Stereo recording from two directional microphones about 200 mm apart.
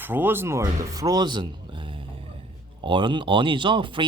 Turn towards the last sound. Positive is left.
turn(degrees=-25)  # may be behind; listen again after turning